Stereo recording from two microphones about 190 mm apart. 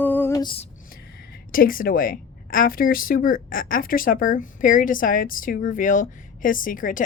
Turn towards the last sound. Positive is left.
turn(degrees=45)  # may be behind; listen again after turning